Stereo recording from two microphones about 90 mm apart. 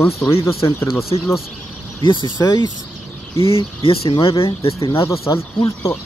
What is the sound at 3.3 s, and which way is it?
Speech, 90° left.